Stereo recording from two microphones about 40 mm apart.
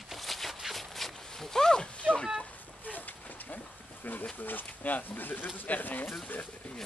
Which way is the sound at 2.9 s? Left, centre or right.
Left.